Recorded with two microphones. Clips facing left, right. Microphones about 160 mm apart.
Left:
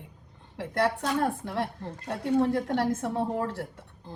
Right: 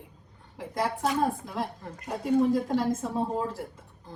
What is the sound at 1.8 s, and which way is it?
Speech, 25° left (ahead or behind).